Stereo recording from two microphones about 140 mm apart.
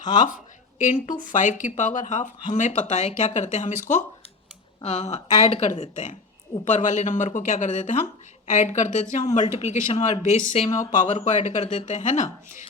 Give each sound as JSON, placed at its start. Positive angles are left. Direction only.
{"t": 0.8, "sound": "speech", "side_deg": 65}
{"t": 4.8, "sound": "speech", "side_deg": 50}